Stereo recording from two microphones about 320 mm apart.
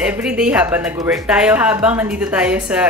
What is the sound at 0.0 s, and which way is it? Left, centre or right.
A woman's voice, centre.